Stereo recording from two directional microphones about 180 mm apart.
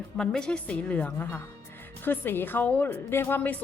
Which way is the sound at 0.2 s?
5° left (ahead or behind).